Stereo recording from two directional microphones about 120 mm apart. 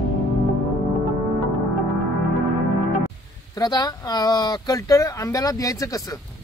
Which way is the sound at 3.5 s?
35° left (ahead or behind).